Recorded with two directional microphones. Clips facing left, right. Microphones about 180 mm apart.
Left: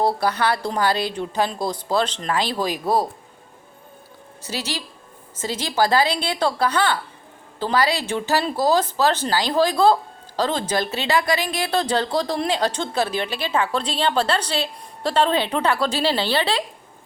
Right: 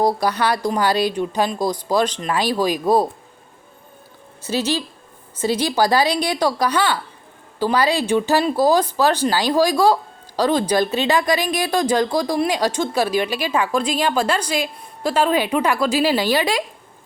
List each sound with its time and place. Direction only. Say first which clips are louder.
0.0 s speech: right 2 dB; 15° right (ahead or behind)
4.4 s speech: right 8 dB; 20° right (ahead or behind)